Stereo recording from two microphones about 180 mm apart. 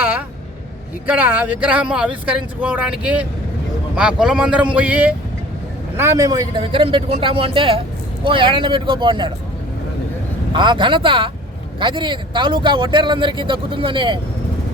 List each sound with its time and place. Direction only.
1.0 s speech: 10° right (ahead or behind); by 9.3 s 25° right (ahead or behind)
10.5 s speech: 25° right (ahead or behind)